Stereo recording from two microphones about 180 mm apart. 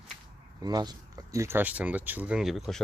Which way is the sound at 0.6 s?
20° right (ahead or behind).